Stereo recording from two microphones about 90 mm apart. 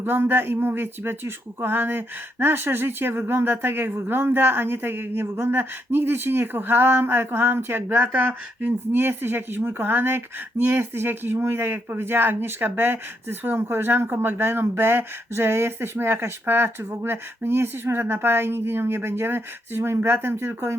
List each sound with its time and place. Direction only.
0.0 s speech: 25° right (ahead or behind)